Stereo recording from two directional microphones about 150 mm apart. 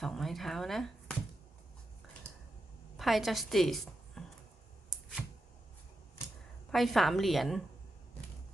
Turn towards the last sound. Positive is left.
turn(degrees=0)  # may be behind; listen again after turning